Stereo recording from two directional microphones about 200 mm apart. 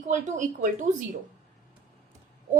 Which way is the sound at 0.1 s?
40° right (ahead or behind).